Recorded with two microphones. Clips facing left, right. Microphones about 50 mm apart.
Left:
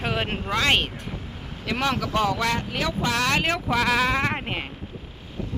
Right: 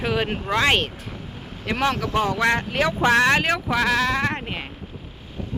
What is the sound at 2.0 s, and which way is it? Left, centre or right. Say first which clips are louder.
Speech: right 1 dB; centre.